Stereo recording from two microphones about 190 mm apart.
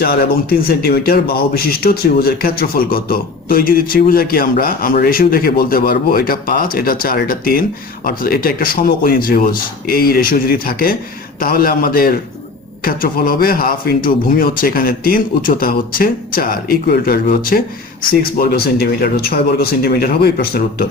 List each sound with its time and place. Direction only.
0.0 s speech: 55° left (ahead or behind)